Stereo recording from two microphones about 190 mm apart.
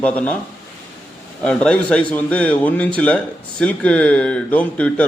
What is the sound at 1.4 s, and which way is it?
Speech, 5° left (ahead or behind).